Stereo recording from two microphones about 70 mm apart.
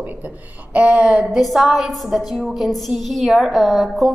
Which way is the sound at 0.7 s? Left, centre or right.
Right.